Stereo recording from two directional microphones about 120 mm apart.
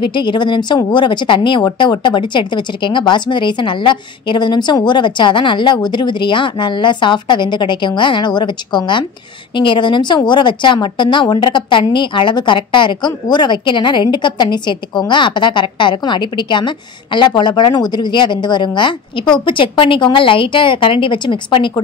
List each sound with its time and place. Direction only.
0.0 s a woman's voice: 40° left (ahead or behind)